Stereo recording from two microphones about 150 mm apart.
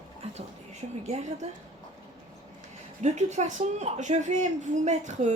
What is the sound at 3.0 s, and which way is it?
Speech, 50° right (ahead or behind).